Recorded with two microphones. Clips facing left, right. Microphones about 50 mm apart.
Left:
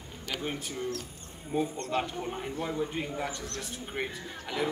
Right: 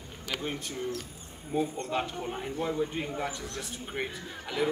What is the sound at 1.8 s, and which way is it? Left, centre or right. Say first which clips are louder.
A man's voice: even; centre.